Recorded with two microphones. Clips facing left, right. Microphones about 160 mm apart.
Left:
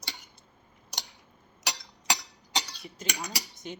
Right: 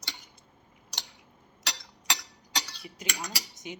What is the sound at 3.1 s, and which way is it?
Speech, 20° left (ahead or behind).